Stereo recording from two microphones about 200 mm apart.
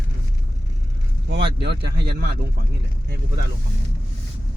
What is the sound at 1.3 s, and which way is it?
Speech, 55° right (ahead or behind).